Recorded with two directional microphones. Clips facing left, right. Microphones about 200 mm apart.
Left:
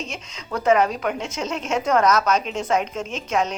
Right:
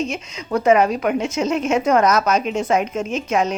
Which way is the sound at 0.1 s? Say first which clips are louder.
Right 7 dB; 10° right (ahead or behind).